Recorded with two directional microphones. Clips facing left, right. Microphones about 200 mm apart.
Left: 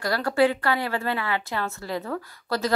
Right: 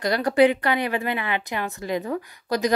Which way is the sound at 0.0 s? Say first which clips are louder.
Right 3 dB; 20° right (ahead or behind).